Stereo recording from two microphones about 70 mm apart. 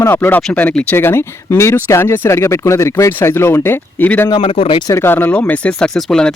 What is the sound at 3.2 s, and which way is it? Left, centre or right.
Speech, left.